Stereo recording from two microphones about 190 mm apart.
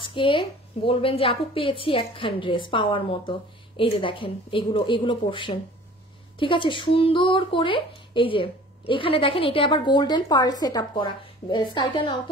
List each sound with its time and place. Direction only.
0.0 s speech: 25° left (ahead or behind)